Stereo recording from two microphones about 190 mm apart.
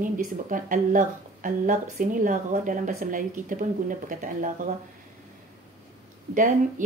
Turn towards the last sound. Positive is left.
turn(degrees=-45)  # may be behind; listen again after turning